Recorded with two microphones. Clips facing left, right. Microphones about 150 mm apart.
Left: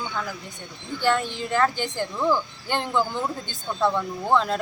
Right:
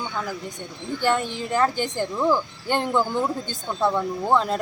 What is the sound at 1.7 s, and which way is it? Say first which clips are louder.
Speech: right 2 dB; 45° right (ahead or behind).